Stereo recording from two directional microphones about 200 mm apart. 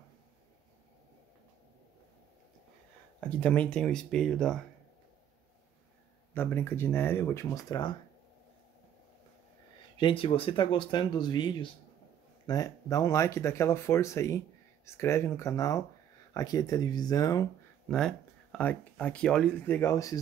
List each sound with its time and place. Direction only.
3.2 s speech: 5° left (ahead or behind)
6.3 s speech: 10° left (ahead or behind)
9.9 s speech: 25° left (ahead or behind)
17.8 s speech: 5° left (ahead or behind)